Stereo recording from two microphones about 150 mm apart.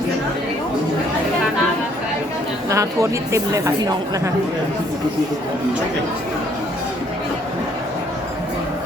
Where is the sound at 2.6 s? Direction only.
20° right (ahead or behind).